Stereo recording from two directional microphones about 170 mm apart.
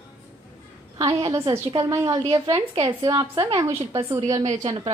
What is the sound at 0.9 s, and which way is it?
A woman's voice, 25° right (ahead or behind).